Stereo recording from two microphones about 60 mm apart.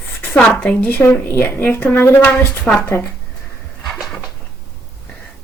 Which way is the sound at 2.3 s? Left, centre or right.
Centre.